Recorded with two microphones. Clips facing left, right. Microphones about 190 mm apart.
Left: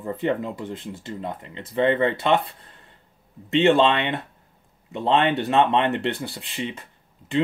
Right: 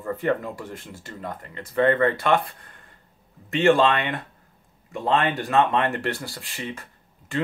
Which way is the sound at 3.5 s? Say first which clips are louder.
Left 1 dB; 20° left (ahead or behind).